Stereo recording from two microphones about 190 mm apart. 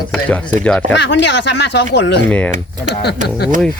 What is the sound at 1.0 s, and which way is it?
Speech, 65° left (ahead or behind).